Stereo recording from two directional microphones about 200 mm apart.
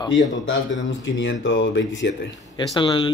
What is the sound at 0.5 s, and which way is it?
Speech, 70° left (ahead or behind).